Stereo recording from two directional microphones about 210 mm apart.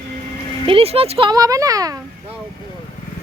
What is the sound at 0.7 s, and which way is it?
Speech, 25° right (ahead or behind).